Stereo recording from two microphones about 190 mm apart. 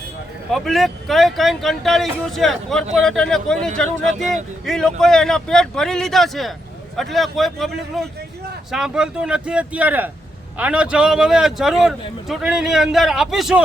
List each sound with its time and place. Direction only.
0.5 s speech: centre (ahead or behind)